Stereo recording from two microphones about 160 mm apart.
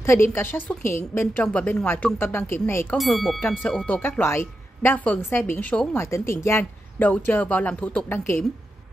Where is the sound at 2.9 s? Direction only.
Centre (ahead or behind).